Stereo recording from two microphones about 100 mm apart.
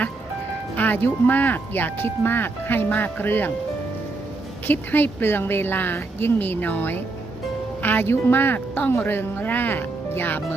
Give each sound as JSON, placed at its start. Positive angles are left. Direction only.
{"t": 0.8, "sound": "speech", "side_deg": 20}
{"t": 4.6, "sound": "speech", "side_deg": 20}